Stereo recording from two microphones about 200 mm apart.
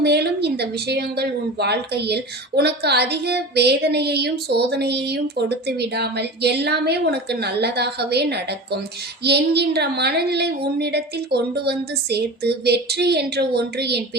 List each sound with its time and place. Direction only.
0.0 s a woman's voice: 55° right (ahead or behind)